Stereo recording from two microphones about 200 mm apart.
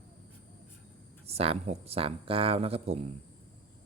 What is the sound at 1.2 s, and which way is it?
Speech, 30° right (ahead or behind).